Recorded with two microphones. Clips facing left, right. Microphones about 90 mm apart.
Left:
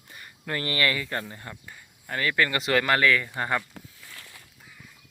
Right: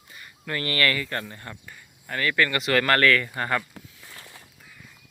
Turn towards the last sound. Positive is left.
turn(degrees=-20)  # may be behind; listen again after turning